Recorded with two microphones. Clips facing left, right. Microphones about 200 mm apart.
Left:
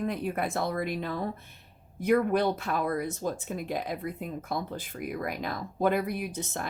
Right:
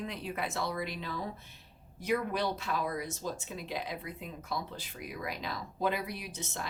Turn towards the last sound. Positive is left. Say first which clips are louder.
# left 7 dB
turn(degrees=50)  # may be behind; listen again after turning